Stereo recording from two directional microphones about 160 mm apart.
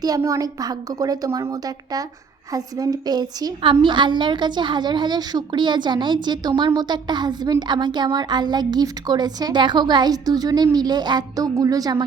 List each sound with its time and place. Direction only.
0.0 s a woman's voice: 20° right (ahead or behind)